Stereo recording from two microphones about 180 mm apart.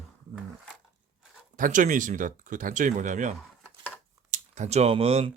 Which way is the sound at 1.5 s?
45° right (ahead or behind).